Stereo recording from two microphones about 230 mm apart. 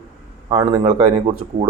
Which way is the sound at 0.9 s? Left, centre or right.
Right.